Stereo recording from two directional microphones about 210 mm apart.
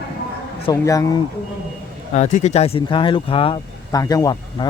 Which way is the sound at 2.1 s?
35° left (ahead or behind).